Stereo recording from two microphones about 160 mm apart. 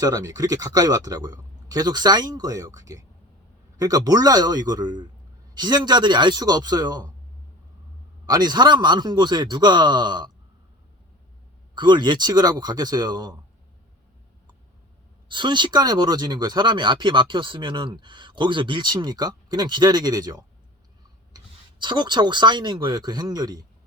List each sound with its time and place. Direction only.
0.0 s speech: 20° right (ahead or behind)
8.3 s speech: 25° right (ahead or behind)
11.7 s speech: 30° right (ahead or behind)
15.3 s speech: 30° right (ahead or behind)